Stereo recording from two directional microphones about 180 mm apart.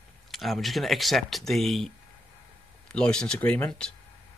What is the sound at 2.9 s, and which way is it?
Speech, 5° left (ahead or behind).